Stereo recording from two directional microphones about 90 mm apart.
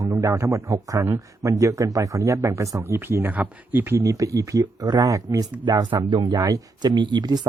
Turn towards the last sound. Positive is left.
turn(degrees=-50)  # may be behind; listen again after turning